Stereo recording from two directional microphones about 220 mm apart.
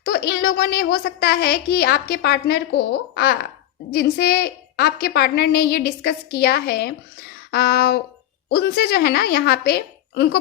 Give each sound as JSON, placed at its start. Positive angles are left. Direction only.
{"t": 0.0, "sound": "a child's voice", "side_deg": 45}